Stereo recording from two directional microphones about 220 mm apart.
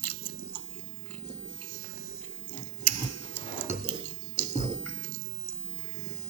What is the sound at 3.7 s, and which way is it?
Dishes, 30° left (ahead or behind).